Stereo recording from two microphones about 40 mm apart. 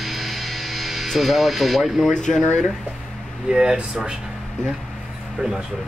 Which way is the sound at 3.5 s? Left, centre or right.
Centre.